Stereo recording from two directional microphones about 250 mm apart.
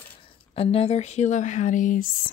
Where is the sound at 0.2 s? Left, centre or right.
Left.